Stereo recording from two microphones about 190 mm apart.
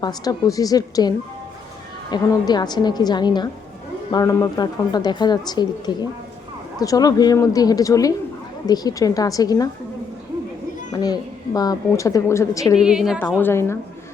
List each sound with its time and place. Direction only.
0.0 s speech: 20° left (ahead or behind)
10.9 s speech: 20° left (ahead or behind)
12.7 s a woman's voice: 5° right (ahead or behind)
13.4 s a woman's voice: 15° left (ahead or behind)